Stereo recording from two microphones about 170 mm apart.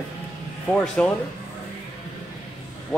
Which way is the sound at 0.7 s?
5° left (ahead or behind).